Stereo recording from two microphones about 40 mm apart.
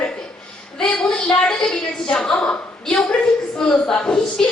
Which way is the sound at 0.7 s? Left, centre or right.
Left.